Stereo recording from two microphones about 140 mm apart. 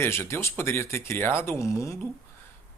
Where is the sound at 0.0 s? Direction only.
20° left (ahead or behind).